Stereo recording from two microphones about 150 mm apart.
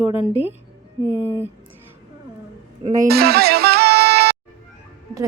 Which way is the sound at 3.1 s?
90° right.